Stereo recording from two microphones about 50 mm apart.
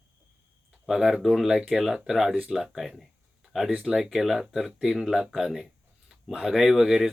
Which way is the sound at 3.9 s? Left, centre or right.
Centre.